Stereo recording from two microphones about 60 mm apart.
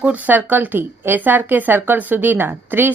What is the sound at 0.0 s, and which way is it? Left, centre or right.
A woman's voice, right.